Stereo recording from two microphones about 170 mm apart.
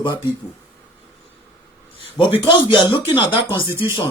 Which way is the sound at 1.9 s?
30° left (ahead or behind).